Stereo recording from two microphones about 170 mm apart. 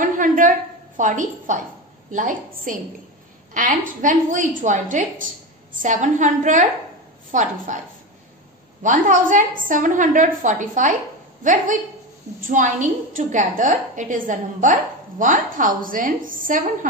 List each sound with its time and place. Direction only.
0.0 s a sound: 50° right (ahead or behind)
2.0 s a woman's voice: 50° right (ahead or behind)
8.8 s a woman's voice: 50° right (ahead or behind)
12.4 s a woman's voice: 50° right (ahead or behind)